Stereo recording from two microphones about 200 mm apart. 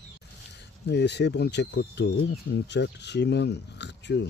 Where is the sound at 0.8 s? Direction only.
55° left (ahead or behind).